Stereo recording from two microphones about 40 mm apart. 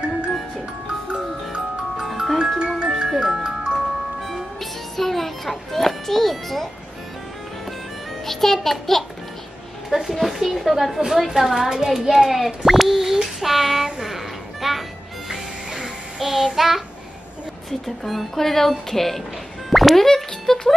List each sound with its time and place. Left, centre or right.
2.0 s music: centre
3.4 s music: right
4.6 s music: centre
8.3 s music: centre
9.8 s a woman's voice: centre
13.9 s music: centre
17.6 s speech: centre
19.7 s music: centre